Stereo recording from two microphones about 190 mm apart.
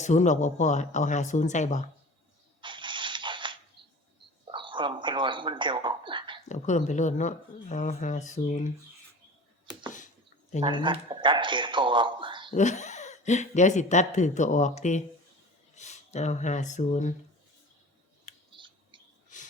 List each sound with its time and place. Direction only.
0.0 s speech: 40° left (ahead or behind)
2.6 s a sound: 25° right (ahead or behind)
6.5 s speech: 40° left (ahead or behind)
10.6 s speech: 25° right (ahead or behind)
12.5 s speech: 40° left (ahead or behind)
18.5 s a sound: 25° right (ahead or behind)